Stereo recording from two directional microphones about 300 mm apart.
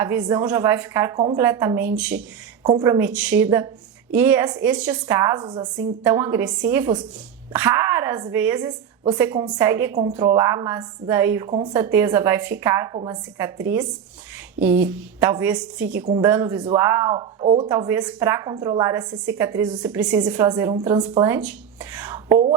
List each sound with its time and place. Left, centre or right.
0.0 s a woman's voice: centre
14.7 s a woman's voice: centre
15.8 s a woman's voice: right
16.1 s a woman's voice: centre
22.3 s speech: right